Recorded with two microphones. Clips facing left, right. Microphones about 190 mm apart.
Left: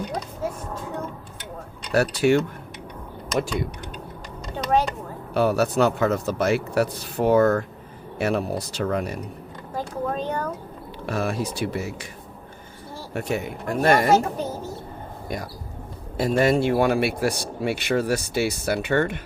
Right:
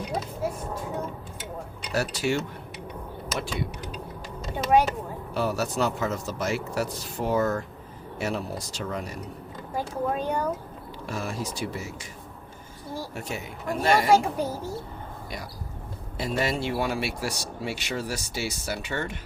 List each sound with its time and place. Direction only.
1.9 s speech: 60° left (ahead or behind)
3.3 s speech: centre (ahead or behind)
5.3 s speech: 60° left (ahead or behind)
9.7 s speech: 10° right (ahead or behind)
11.0 s speech: 65° left (ahead or behind)
13.1 s speech: 60° left (ahead or behind)
14.1 s speech: 10° right (ahead or behind)
16.1 s speech: 50° left (ahead or behind)